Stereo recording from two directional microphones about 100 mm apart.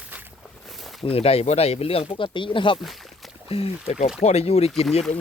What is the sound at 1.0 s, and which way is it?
Speech, 80° left.